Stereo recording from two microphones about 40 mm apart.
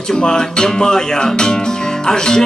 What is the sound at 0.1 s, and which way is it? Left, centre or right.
Music, centre.